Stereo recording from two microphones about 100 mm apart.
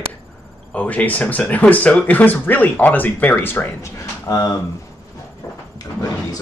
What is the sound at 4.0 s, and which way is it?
Speech, 35° left (ahead or behind).